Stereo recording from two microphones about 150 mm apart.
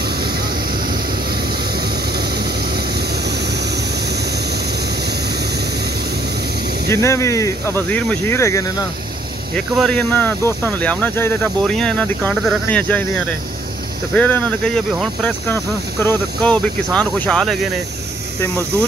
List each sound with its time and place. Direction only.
0.0 s vehicle: 90° right
1.8 s vehicle: 90° right
6.9 s speech: 20° left (ahead or behind)
9.8 s speech: 5° left (ahead or behind)
14.1 s speech: 10° left (ahead or behind)